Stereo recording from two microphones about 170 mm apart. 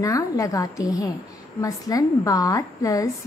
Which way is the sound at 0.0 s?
20° left (ahead or behind).